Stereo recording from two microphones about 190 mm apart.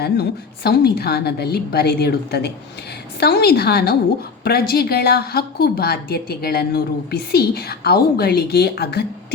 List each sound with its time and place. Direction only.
0.0 s a woman's voice: 55° left (ahead or behind)